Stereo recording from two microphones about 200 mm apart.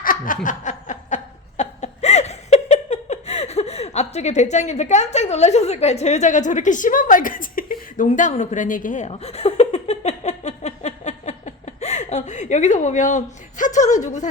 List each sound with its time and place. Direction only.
0.0 s snicker: 45° left (ahead or behind)